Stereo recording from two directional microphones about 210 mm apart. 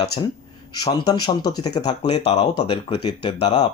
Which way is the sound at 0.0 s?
15° left (ahead or behind).